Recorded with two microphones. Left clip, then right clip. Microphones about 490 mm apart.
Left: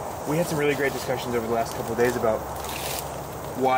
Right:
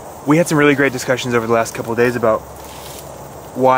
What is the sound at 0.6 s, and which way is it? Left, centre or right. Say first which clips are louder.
Speech: right 10 dB; right.